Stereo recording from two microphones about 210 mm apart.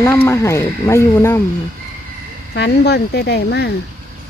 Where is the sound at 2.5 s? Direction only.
55° left (ahead or behind).